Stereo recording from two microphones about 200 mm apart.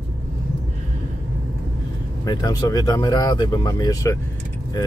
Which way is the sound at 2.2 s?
20° left (ahead or behind).